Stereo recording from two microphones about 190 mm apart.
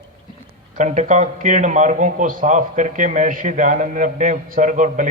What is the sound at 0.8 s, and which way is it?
A man's voice, 40° right (ahead or behind).